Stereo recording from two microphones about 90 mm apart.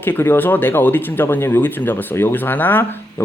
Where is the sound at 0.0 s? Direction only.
25° left (ahead or behind).